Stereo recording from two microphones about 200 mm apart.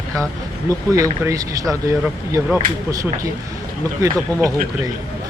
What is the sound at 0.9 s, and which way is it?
Speech, 15° right (ahead or behind).